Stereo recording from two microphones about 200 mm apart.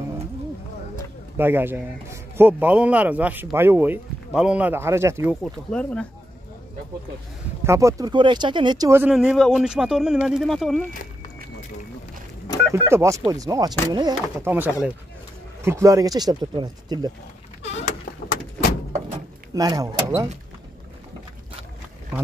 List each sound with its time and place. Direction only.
1.3 s a man's voice: 10° right (ahead or behind)
5.3 s speech: 5° left (ahead or behind)
7.6 s speech: 15° right (ahead or behind)
10.9 s a sound: 40° left (ahead or behind)
12.7 s a man's voice: 15° right (ahead or behind)
14.5 s a man's voice: 10° right (ahead or behind)
19.5 s speech: 20° right (ahead or behind)